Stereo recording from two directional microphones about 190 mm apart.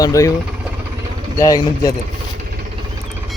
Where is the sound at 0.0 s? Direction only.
15° left (ahead or behind).